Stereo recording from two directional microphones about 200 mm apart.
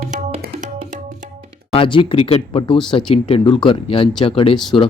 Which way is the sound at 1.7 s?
25° left (ahead or behind).